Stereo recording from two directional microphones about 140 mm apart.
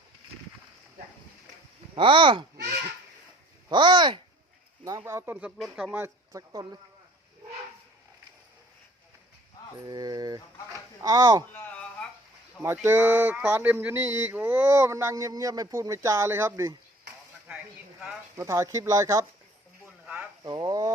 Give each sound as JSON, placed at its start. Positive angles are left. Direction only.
{"t": 2.0, "sound": "speech", "side_deg": -35}
{"t": 3.7, "sound": "speech", "side_deg": -35}
{"t": 4.9, "sound": "speech", "side_deg": -20}
{"t": 6.0, "sound": "speech", "side_deg": -25}
{"t": 9.8, "sound": "speech", "side_deg": -30}
{"t": 11.5, "sound": "a sound", "side_deg": 10}
{"t": 12.6, "sound": "speech", "side_deg": -15}
{"t": 18.3, "sound": "speech", "side_deg": -20}
{"t": 20.4, "sound": "speech", "side_deg": -30}